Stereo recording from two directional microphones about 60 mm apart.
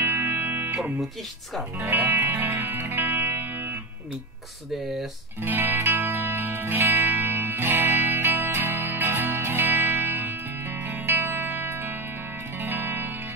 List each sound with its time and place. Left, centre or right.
0.0 s music: right
1.9 s music: right
5.4 s music: right